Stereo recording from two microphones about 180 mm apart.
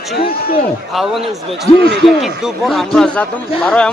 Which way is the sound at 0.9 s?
Centre (ahead or behind).